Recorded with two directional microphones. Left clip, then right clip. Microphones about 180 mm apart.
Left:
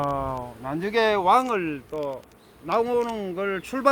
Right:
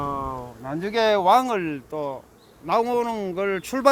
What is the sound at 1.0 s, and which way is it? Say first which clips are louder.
Speech: right 3 dB; 50° right (ahead or behind).